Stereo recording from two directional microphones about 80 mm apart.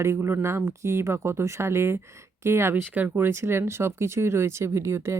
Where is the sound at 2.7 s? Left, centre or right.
Right.